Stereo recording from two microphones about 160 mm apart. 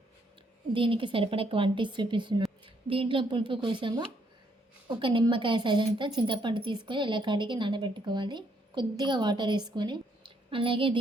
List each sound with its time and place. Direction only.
0.7 s a woman's voice: 35° right (ahead or behind)